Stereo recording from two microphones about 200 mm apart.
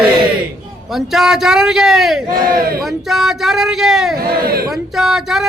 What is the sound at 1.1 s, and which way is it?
Speech, centre (ahead or behind).